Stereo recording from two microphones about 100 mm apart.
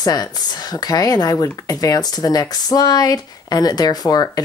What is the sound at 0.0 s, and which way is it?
Speech, 40° left (ahead or behind).